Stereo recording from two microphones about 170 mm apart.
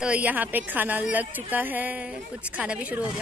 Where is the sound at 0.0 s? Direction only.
10° right (ahead or behind).